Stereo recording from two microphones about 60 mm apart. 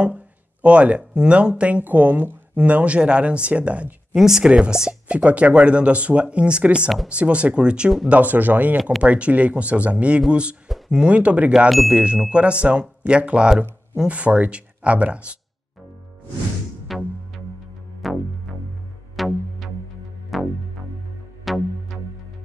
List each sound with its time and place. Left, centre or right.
0.0 s speech: right
4.1 s speech: centre
8.1 s speech: right
10.7 s speech: centre
11.1 s speech: right
16.9 s music: centre